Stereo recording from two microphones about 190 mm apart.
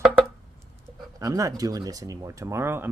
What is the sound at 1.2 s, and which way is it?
Speech, 20° right (ahead or behind).